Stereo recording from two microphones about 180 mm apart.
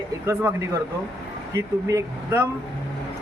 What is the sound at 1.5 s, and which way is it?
Speech, 15° right (ahead or behind).